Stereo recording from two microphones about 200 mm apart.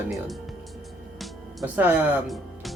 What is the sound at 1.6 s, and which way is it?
Speech, 10° right (ahead or behind).